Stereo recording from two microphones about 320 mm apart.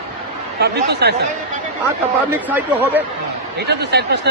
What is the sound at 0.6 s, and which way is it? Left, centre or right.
Speech, right.